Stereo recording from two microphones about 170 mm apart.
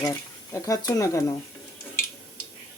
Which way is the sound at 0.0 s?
20° left (ahead or behind).